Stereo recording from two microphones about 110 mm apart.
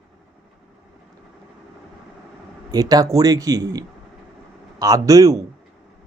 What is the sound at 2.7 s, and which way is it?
A man's voice, 35° right (ahead or behind).